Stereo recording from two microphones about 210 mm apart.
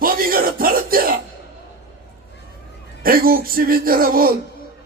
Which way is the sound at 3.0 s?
45° right (ahead or behind).